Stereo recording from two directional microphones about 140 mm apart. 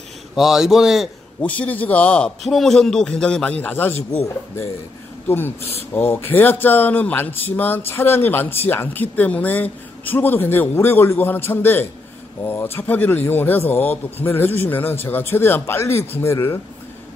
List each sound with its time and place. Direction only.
0.4 s a man's voice: 5° right (ahead or behind)
1.4 s speech: 10° left (ahead or behind)
5.3 s speech: 15° left (ahead or behind)